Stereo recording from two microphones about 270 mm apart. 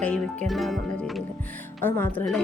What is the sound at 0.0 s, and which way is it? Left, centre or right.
Speech, centre.